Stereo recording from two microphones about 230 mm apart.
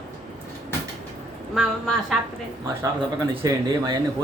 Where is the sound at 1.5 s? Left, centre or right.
Centre.